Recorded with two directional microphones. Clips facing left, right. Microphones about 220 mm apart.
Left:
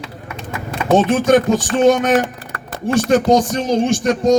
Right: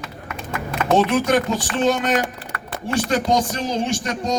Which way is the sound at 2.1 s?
45° left (ahead or behind).